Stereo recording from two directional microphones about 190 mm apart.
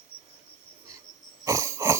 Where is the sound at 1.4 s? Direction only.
15° right (ahead or behind).